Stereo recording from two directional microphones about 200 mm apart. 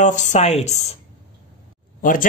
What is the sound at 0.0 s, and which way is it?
Speech, 35° left (ahead or behind).